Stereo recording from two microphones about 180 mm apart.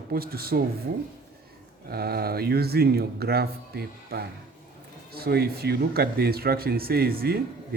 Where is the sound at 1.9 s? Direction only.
60° right (ahead or behind).